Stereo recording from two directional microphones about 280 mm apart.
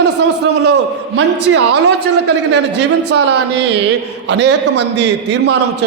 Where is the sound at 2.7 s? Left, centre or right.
Right.